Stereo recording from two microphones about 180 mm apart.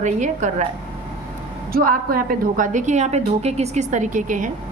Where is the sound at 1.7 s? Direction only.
55° right (ahead or behind).